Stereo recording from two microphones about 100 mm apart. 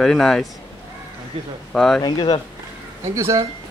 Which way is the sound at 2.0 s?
45° left (ahead or behind).